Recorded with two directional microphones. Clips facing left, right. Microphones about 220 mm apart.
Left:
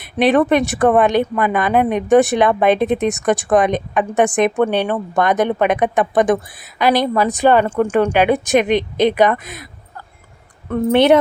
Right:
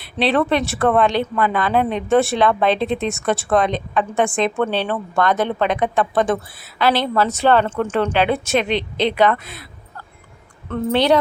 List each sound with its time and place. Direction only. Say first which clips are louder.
0.2 s speech: left 4 dB; 15° left (ahead or behind)
10.7 s a woman's voice: left 4 dB; 20° left (ahead or behind)